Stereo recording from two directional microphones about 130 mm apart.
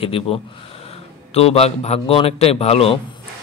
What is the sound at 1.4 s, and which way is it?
A man's voice, 50° left (ahead or behind).